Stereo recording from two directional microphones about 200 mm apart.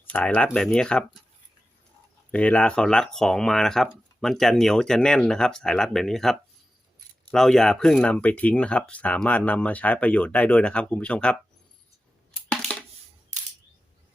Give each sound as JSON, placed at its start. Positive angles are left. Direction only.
{"t": 0.0, "sound": "speech", "side_deg": 5}
{"t": 2.3, "sound": "speech", "side_deg": 5}
{"t": 12.7, "sound": "coin", "side_deg": 5}
{"t": 13.3, "sound": "camera", "side_deg": -35}